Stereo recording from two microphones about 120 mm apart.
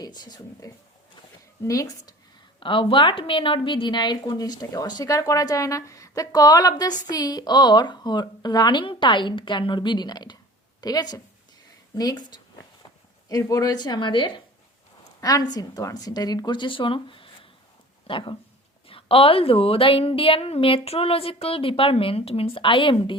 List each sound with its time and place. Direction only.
0.0 s a woman's voice: 35° left (ahead or behind)
2.6 s a woman's voice: 45° left (ahead or behind)
15.2 s a woman's voice: 30° left (ahead or behind)